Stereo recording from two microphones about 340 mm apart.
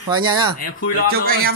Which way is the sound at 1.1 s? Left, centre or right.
Right.